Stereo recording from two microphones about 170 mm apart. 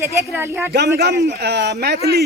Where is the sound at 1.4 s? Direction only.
75° right (ahead or behind).